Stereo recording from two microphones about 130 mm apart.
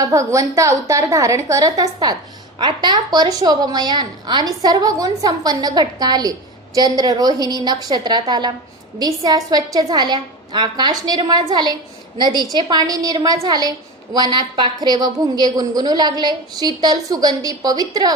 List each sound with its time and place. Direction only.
0.0 s a woman's voice: 25° right (ahead or behind)